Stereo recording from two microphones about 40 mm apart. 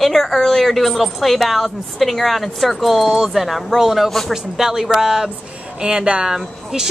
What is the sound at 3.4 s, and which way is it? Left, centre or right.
A woman's voice, centre.